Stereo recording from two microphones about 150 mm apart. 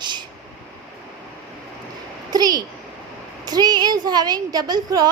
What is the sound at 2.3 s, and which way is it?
A woman's voice, 25° right (ahead or behind).